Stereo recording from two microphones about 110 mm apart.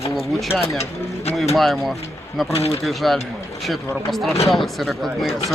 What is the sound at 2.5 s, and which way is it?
Speech, 65° left (ahead or behind).